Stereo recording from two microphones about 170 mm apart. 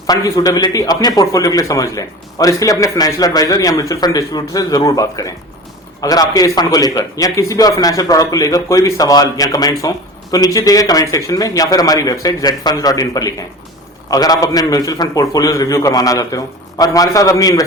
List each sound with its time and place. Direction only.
0.1 s a man's voice: 20° left (ahead or behind)